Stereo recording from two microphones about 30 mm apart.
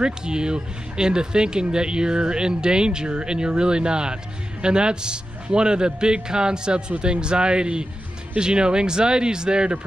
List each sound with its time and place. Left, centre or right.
0.0 s a man's voice: right